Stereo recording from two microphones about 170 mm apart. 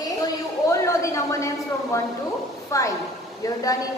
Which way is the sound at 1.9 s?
15° left (ahead or behind).